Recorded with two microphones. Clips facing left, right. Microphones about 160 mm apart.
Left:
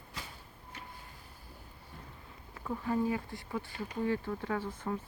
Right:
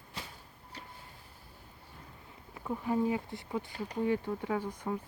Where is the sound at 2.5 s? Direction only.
15° right (ahead or behind).